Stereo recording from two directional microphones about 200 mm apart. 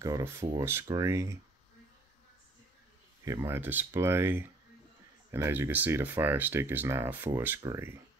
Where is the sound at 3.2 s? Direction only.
15° right (ahead or behind).